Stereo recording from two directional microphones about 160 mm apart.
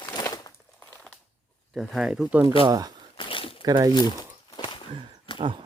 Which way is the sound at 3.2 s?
30° left (ahead or behind).